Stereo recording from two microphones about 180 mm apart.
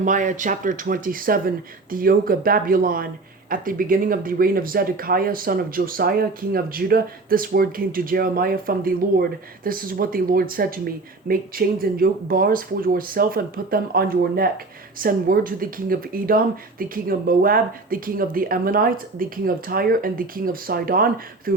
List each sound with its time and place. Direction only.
0.0 s speech: 45° right (ahead or behind)